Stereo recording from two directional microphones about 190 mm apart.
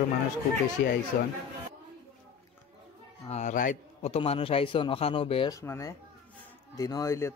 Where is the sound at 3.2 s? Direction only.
35° left (ahead or behind).